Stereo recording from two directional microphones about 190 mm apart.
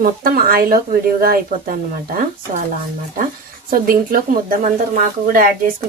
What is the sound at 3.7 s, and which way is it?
Speech, 50° right (ahead or behind).